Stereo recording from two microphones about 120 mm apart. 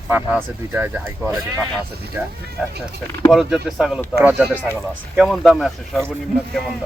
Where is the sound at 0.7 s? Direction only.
15° right (ahead or behind).